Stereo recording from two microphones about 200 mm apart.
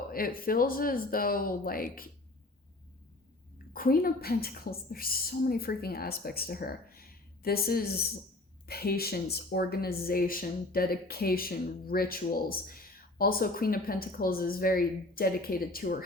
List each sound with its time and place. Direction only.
0.1 s speech: 45° left (ahead or behind)
3.7 s speech: 45° left (ahead or behind)